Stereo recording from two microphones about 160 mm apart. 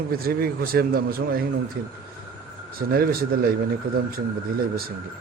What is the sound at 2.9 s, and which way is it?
Speech, 70° right (ahead or behind).